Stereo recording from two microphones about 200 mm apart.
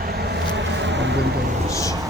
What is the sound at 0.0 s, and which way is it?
Vehicle, 50° right (ahead or behind).